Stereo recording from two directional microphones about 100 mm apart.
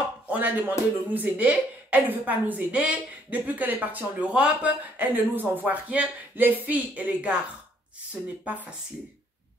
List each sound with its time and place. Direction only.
0.3 s speech: 20° right (ahead or behind)